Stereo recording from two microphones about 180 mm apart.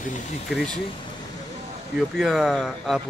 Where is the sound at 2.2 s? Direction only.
Centre (ahead or behind).